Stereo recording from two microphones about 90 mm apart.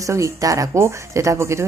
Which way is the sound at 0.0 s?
35° right (ahead or behind).